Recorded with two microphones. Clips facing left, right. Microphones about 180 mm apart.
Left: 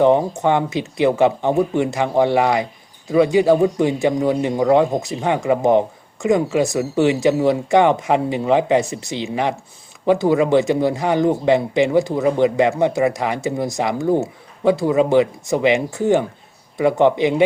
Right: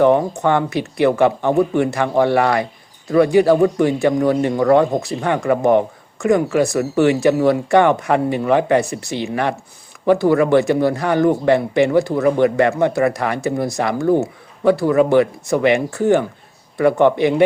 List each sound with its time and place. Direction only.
0.0 s a man's voice: 15° left (ahead or behind)